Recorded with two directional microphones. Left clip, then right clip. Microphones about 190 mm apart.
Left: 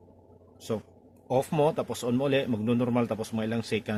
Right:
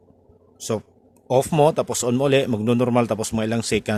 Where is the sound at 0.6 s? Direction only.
50° right (ahead or behind).